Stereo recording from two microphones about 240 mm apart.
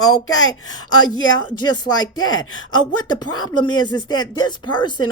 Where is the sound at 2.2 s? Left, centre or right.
Left.